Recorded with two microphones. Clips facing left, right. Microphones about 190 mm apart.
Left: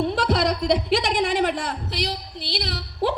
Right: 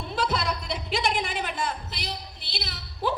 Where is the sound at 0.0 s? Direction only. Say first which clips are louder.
Left 7 dB; 70° left (ahead or behind).